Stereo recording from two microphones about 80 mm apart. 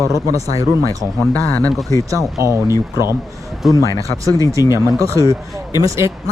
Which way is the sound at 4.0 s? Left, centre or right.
Right.